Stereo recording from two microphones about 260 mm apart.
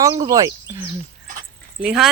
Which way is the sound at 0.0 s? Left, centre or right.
Centre.